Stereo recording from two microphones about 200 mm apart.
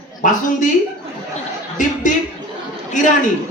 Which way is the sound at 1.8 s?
40° left (ahead or behind).